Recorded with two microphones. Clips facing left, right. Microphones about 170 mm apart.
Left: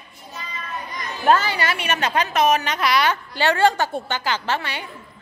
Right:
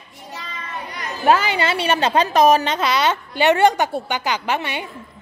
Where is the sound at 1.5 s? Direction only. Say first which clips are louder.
Right 4 dB; 25° right (ahead or behind).